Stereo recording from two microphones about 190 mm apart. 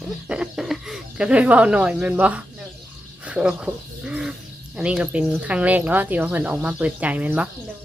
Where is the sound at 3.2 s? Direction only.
5° right (ahead or behind).